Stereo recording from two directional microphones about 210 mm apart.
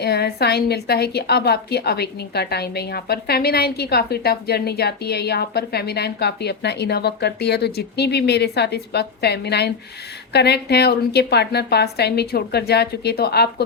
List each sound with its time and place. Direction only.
0.0 s a woman's voice: 50° left (ahead or behind)